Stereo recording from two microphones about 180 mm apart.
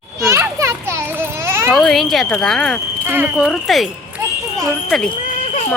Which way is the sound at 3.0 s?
10° right (ahead or behind).